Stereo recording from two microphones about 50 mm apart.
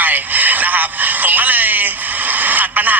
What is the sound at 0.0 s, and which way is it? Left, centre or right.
Radio, right.